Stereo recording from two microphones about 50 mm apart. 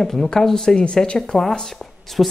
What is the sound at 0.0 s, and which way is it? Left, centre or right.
Speech, centre.